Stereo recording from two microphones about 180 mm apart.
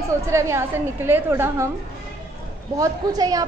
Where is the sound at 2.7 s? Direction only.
20° right (ahead or behind).